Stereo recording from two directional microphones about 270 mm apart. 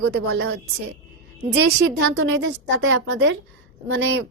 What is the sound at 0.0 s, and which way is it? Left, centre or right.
Speech, right.